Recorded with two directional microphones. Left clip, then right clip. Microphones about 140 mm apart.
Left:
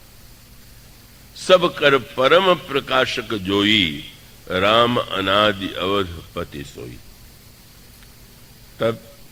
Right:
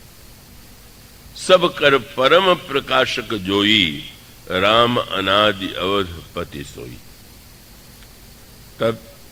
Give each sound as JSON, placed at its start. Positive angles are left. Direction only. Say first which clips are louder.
{"t": 1.4, "sound": "a man's voice", "louder": "right 1 dB", "side_deg": -40}
{"t": 8.8, "sound": "a man's voice", "louder": "right 1 dB", "side_deg": -40}